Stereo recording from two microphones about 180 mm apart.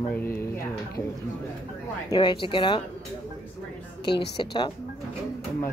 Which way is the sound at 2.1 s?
25° left (ahead or behind).